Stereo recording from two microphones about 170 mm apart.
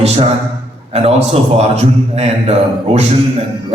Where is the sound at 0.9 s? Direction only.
35° right (ahead or behind).